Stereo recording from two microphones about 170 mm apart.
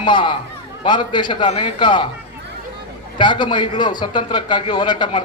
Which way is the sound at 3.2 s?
25° left (ahead or behind).